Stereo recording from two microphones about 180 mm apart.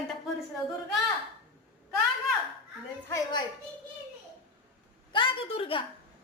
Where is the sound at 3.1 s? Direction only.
25° left (ahead or behind).